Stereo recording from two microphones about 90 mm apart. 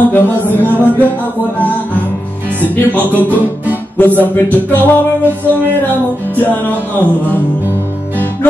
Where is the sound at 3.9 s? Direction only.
20° left (ahead or behind).